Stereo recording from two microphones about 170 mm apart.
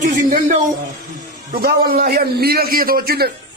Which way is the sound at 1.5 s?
65° right (ahead or behind).